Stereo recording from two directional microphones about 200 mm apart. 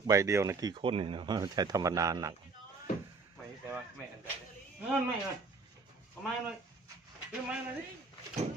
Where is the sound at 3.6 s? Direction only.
10° right (ahead or behind).